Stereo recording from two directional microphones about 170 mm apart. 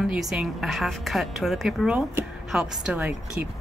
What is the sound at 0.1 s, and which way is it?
A woman's voice, centre (ahead or behind).